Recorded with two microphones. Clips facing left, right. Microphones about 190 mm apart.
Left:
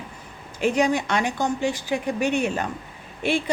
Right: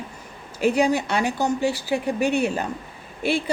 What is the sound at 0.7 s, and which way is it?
Speech, 10° right (ahead or behind).